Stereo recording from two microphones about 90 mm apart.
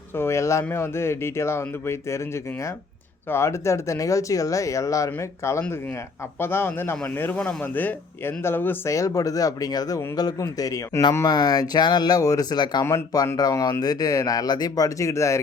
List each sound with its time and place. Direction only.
0.2 s speech: 30° left (ahead or behind)
8.9 s speech: 35° left (ahead or behind)
11.3 s speech: 50° left (ahead or behind)
13.3 s speech: 40° left (ahead or behind)